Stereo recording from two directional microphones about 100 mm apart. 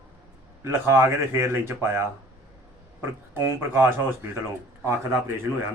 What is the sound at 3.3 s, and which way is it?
Speech, 20° right (ahead or behind).